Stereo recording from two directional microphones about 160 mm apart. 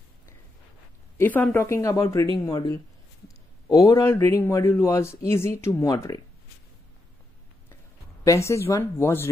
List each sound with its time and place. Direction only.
1.1 s a woman's voice: 10° left (ahead or behind)
8.3 s a woman's voice: 20° left (ahead or behind)